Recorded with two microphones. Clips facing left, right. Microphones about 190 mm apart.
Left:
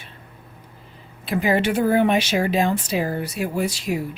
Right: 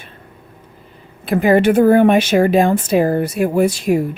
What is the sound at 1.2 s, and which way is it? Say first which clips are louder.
Speech: right 8 dB; 50° right (ahead or behind).